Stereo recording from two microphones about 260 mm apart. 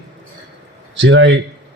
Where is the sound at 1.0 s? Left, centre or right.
Right.